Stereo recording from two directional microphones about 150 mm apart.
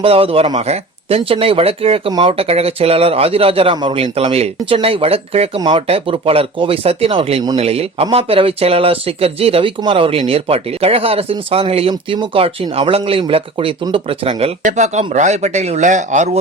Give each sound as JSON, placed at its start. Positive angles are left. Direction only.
{"t": 0.0, "sound": "speech", "side_deg": -40}
{"t": 14.6, "sound": "speech", "side_deg": -55}